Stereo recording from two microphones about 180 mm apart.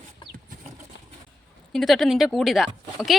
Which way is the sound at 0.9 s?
75° left (ahead or behind).